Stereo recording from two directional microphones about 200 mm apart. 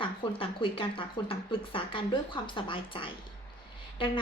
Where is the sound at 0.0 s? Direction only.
25° left (ahead or behind).